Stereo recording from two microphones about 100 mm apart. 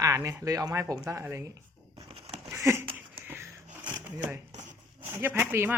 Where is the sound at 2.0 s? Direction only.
75° right (ahead or behind).